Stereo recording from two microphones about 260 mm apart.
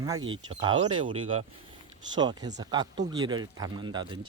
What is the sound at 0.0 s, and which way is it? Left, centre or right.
Speech, centre.